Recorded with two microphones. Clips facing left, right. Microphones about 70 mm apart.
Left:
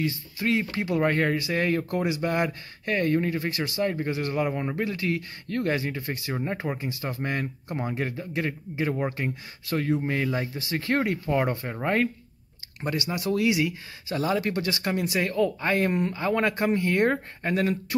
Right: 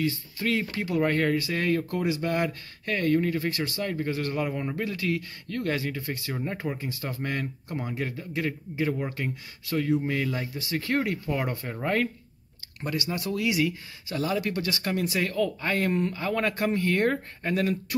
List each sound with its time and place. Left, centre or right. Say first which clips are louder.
0.0 s speech: even; left